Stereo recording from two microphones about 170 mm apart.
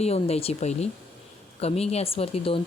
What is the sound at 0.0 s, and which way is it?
Speech, 35° left (ahead or behind).